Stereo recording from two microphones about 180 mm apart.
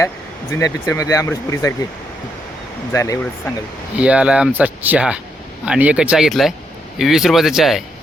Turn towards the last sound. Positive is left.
turn(degrees=0)  # may be behind; listen again after turning